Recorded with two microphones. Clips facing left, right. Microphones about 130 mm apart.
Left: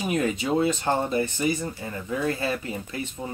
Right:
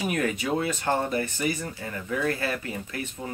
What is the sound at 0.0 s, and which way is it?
Speech, 20° left (ahead or behind).